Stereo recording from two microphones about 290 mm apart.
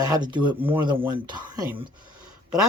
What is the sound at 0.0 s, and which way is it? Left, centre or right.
Speech, centre.